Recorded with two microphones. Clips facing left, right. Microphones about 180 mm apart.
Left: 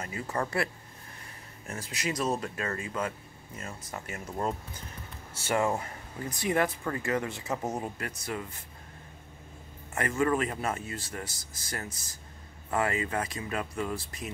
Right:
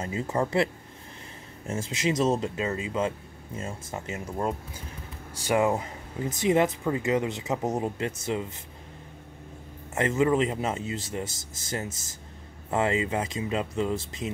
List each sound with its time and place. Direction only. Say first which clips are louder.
0.0 s speech: right 5 dB; 25° right (ahead or behind)
1.7 s speech: right 7 dB; 25° right (ahead or behind)
4.4 s speech: right 2 dB; 10° right (ahead or behind)
9.9 s speech: right 4 dB; 20° right (ahead or behind)